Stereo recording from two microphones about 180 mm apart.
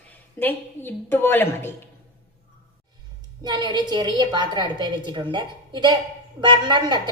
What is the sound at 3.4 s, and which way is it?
A woman's voice, 25° right (ahead or behind).